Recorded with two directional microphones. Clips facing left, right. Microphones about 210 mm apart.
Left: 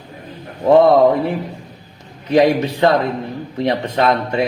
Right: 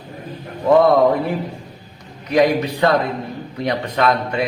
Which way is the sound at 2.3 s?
25° left (ahead or behind).